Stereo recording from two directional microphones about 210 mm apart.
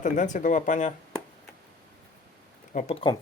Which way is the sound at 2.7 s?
30° left (ahead or behind).